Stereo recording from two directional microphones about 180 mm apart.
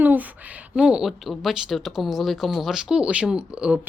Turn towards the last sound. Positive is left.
turn(degrees=-5)  # may be behind; listen again after turning